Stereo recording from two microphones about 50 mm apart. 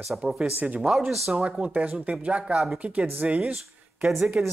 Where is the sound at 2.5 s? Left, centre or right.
Centre.